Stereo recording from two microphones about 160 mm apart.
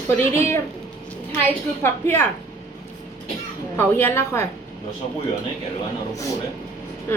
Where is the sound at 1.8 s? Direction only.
15° left (ahead or behind).